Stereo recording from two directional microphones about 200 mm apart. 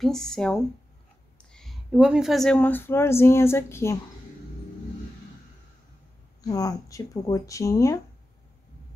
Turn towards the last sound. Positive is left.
turn(degrees=15)  # may be behind; listen again after turning